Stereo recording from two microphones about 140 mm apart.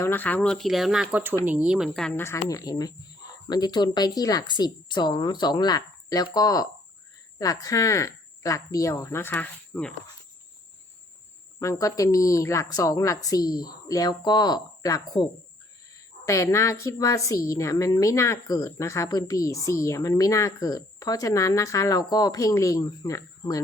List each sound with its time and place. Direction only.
0.0 s speech: 15° left (ahead or behind); by 1.0 s centre (ahead or behind)
1.1 s a woman's voice: 15° right (ahead or behind)
1.9 s speech: 5° left (ahead or behind)
2.1 s a woman's voice: 20° left (ahead or behind)
11.6 s a woman's voice: 20° left (ahead or behind)